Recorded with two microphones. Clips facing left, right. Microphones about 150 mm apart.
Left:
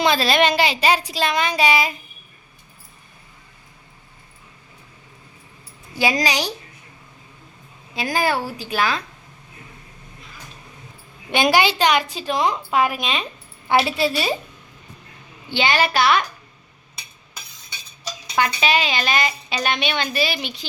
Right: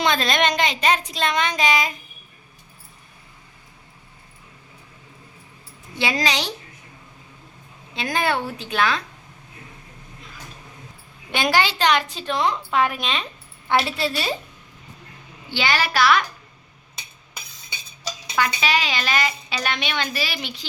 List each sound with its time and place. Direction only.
0.0 s a woman's voice: 5° left (ahead or behind)
5.9 s a woman's voice: 10° left (ahead or behind)
7.9 s a woman's voice: 5° left (ahead or behind)
11.3 s a woman's voice: 15° left (ahead or behind)
15.5 s a woman's voice: 20° left (ahead or behind)
18.3 s a woman's voice: 25° left (ahead or behind)